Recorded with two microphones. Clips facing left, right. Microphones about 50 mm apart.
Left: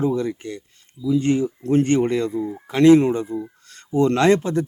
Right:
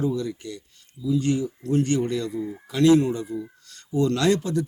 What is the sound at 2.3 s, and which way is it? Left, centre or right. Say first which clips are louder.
Speech: left 4 dB; centre.